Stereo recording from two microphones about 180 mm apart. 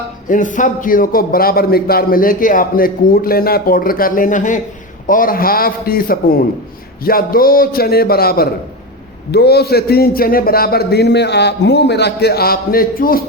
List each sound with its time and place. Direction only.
0.3 s a man's voice: 45° left (ahead or behind)